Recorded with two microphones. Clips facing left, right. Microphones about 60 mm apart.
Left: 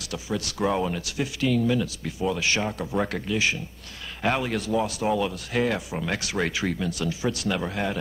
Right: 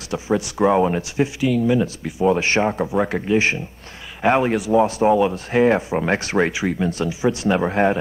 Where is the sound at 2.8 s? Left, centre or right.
Right.